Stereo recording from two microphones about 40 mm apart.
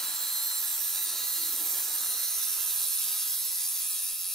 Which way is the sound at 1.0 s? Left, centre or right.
Centre.